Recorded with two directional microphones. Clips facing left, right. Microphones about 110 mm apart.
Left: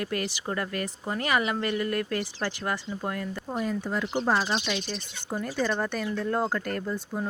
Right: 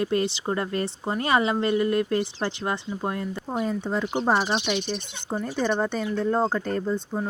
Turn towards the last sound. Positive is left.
turn(degrees=-20)  # may be behind; listen again after turning